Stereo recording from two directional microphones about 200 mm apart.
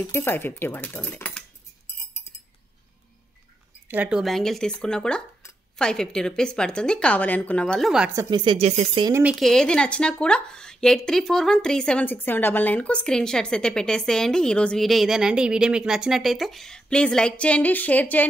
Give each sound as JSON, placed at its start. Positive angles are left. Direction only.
{"t": 0.1, "sound": "speech", "side_deg": 10}
{"t": 3.9, "sound": "speech", "side_deg": -5}
{"t": 8.1, "sound": "speech", "side_deg": -15}
{"t": 9.0, "sound": "speech", "side_deg": -10}